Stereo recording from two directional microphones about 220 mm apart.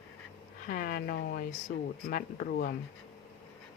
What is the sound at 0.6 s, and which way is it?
Speech, 40° left (ahead or behind).